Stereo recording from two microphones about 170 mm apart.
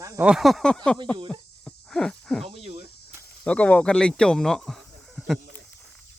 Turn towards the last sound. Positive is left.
turn(degrees=0)  # may be behind; listen again after turning